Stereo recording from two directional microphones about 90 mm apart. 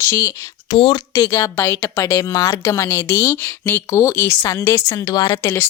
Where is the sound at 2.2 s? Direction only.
40° left (ahead or behind).